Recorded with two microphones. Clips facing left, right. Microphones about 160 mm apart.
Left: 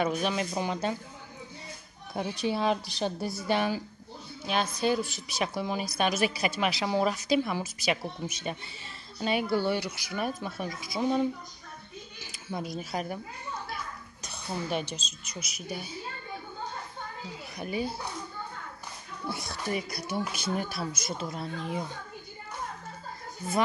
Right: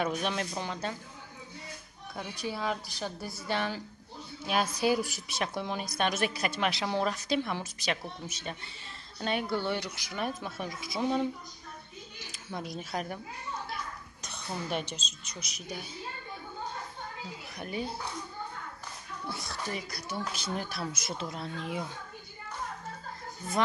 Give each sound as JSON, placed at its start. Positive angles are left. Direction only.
{"t": 0.0, "sound": "speech", "side_deg": 5}
{"t": 0.7, "sound": "a woman's voice", "side_deg": 15}
{"t": 2.4, "sound": "a woman's voice", "side_deg": 25}
{"t": 3.4, "sound": "a woman's voice", "side_deg": 10}
{"t": 4.5, "sound": "speech", "side_deg": -5}
{"t": 5.3, "sound": "speech", "side_deg": 5}
{"t": 12.3, "sound": "speech", "side_deg": 0}
{"t": 14.2, "sound": "speech", "side_deg": 0}
{"t": 17.6, "sound": "speech", "side_deg": 5}
{"t": 19.2, "sound": "speech", "side_deg": 10}